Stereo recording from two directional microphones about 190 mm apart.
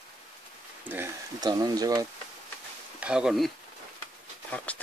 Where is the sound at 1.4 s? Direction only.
20° right (ahead or behind).